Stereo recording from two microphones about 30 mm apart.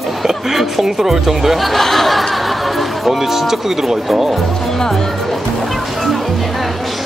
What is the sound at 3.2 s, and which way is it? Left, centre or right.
Speech, centre.